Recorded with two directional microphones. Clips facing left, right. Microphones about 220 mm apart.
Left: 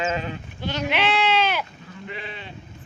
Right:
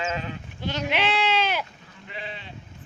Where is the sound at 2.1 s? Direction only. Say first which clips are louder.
Left 1 dB; 60° left (ahead or behind).